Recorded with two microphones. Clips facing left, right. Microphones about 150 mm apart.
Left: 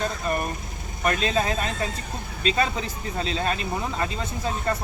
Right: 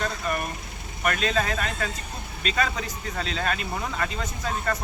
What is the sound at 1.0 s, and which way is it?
Speech, 30° left (ahead or behind).